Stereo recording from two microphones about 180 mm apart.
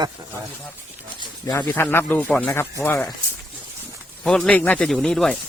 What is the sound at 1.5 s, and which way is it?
Speech, 15° left (ahead or behind).